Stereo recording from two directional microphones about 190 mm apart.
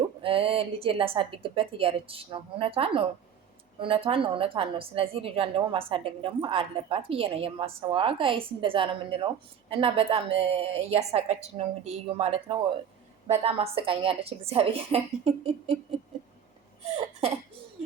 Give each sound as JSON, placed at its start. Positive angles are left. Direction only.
{"t": 0.2, "sound": "a woman's voice", "side_deg": -30}
{"t": 16.8, "sound": "a woman's voice", "side_deg": -35}